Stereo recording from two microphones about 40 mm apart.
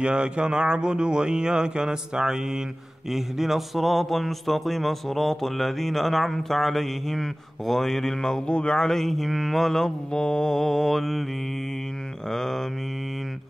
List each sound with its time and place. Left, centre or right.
0.0 s speech: right; by 8.5 s centre
8.5 s speech: left
8.8 s speech: centre
12.3 s mantra: centre